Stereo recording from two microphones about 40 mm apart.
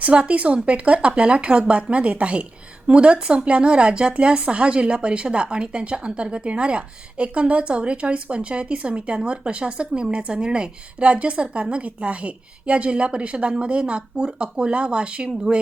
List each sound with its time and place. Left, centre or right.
0.0 s speech: right